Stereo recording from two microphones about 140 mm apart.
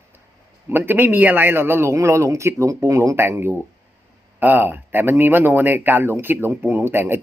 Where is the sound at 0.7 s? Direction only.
15° right (ahead or behind).